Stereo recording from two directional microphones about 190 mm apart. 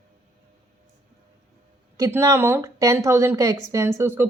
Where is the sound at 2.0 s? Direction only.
15° right (ahead or behind).